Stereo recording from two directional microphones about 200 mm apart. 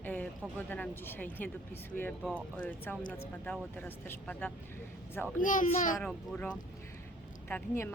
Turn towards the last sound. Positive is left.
turn(degrees=10)  # may be behind; listen again after turning